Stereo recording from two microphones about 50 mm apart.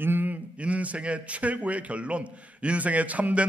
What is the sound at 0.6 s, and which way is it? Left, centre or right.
A man's voice, right.